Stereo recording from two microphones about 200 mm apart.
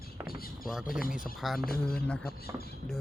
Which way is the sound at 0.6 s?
Centre (ahead or behind).